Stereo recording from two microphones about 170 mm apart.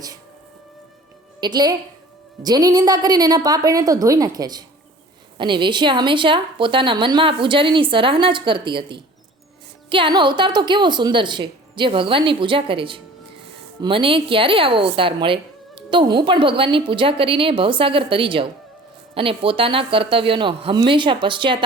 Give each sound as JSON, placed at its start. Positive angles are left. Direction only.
{"t": 1.4, "sound": "a woman's voice", "side_deg": -25}